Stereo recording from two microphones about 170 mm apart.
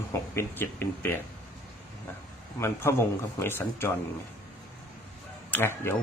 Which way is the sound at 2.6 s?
15° left (ahead or behind).